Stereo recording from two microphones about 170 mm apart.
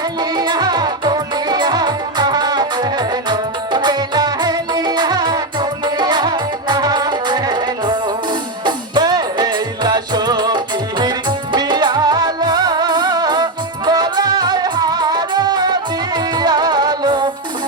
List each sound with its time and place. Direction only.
0.2 s music: 25° right (ahead or behind)